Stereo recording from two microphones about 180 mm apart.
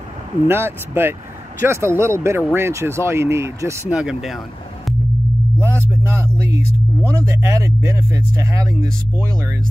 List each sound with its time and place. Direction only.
0.5 s speech: 15° right (ahead or behind)
3.9 s speech: 5° right (ahead or behind)
5.6 s speech: 15° right (ahead or behind)